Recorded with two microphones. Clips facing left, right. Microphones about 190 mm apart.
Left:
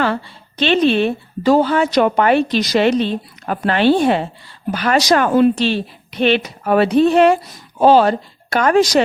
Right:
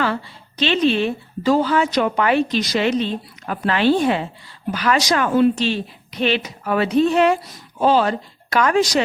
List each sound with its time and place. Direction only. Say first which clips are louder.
0.0 s a woman's voice: left 3 dB; 60° left (ahead or behind)
3.4 s a woman's voice: left 3 dB; 50° left (ahead or behind); by 4.2 s 70° left (ahead or behind)
4.7 s a woman's voice: left 4 dB; 55° left (ahead or behind)
8.5 s speech: left 3 dB; 50° left (ahead or behind)